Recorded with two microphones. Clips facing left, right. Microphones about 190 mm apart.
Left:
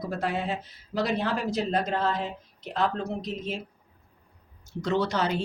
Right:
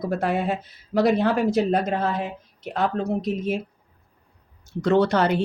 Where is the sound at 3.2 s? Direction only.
55° right (ahead or behind).